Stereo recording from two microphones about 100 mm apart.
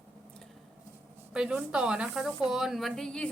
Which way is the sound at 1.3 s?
10° right (ahead or behind).